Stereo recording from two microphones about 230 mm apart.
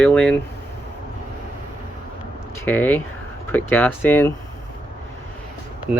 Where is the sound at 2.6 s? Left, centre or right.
Centre.